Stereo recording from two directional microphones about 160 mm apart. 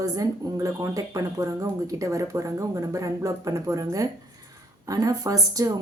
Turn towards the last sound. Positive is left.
turn(degrees=-20)  # may be behind; listen again after turning